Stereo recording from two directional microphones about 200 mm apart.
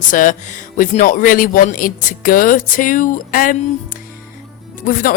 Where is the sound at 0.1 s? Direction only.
40° left (ahead or behind).